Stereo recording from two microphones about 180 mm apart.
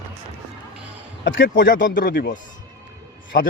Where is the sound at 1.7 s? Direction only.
50° left (ahead or behind).